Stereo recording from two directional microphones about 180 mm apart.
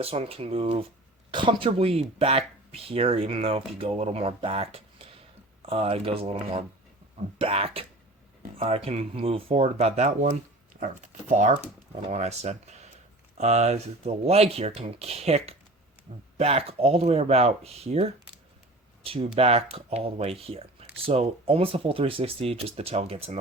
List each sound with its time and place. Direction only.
0.0 s speech: 35° right (ahead or behind)